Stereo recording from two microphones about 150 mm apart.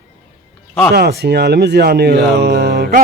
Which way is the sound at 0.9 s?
90° right.